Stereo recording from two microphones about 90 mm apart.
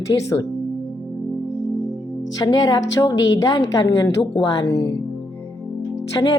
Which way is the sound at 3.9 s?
70° left (ahead or behind).